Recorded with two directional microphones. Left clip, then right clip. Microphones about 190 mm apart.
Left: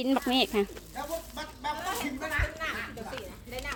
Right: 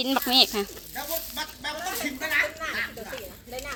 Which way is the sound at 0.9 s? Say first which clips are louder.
Right 3 dB; 40° right (ahead or behind).